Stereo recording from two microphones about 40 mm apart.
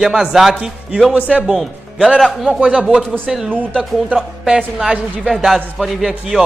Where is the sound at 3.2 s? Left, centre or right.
Centre.